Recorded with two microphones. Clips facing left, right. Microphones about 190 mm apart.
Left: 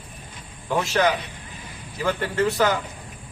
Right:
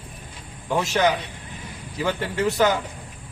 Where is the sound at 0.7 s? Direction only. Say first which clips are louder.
Even; 10° right (ahead or behind).